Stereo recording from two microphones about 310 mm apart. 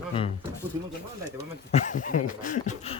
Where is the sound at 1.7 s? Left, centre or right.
Left.